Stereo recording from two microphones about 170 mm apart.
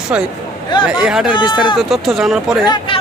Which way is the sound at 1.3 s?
30° left (ahead or behind).